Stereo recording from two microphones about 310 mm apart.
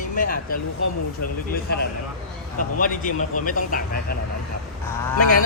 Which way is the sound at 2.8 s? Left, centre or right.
Left.